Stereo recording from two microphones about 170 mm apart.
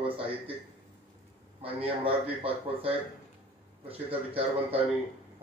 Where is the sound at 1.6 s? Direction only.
35° right (ahead or behind).